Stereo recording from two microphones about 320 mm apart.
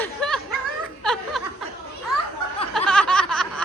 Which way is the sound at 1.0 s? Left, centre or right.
Centre.